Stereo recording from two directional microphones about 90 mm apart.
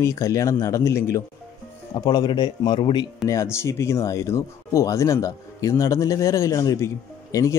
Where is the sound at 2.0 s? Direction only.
50° left (ahead or behind).